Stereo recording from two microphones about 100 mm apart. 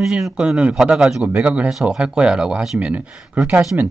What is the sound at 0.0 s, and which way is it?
A man's voice, 5° right (ahead or behind).